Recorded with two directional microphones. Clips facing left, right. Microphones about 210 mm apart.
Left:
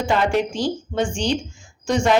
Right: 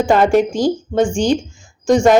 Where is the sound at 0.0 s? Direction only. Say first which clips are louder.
Right 7 dB; 45° right (ahead or behind).